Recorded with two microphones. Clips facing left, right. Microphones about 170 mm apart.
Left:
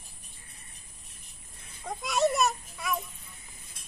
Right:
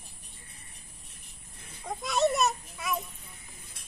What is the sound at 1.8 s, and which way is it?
A child's voice, centre (ahead or behind).